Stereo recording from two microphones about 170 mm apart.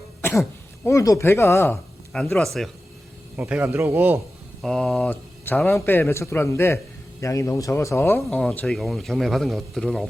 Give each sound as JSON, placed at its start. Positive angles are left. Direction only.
{"t": 0.2, "sound": "throat clearing", "side_deg": 15}
{"t": 0.9, "sound": "a man's voice", "side_deg": 20}
{"t": 2.1, "sound": "speech", "side_deg": 0}
{"t": 3.3, "sound": "a man's voice", "side_deg": -10}
{"t": 4.6, "sound": "a man's voice", "side_deg": 0}